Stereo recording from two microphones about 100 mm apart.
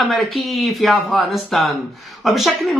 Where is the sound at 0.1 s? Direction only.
Centre (ahead or behind).